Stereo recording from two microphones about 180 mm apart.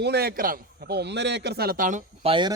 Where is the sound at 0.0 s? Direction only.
60° right (ahead or behind).